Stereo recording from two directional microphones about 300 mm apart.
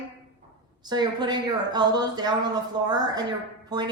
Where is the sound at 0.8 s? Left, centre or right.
Centre.